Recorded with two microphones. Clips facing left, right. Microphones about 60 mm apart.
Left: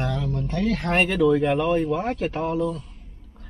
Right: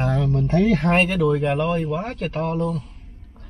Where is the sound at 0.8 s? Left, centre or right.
Centre.